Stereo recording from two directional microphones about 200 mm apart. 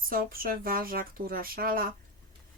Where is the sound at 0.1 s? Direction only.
45° right (ahead or behind).